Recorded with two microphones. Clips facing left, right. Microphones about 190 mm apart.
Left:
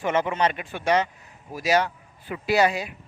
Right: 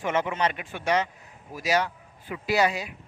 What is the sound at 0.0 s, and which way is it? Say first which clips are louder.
Speech: left 3 dB; 35° left (ahead or behind).